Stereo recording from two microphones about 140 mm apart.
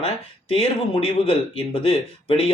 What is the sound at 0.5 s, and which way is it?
Speech, 40° left (ahead or behind).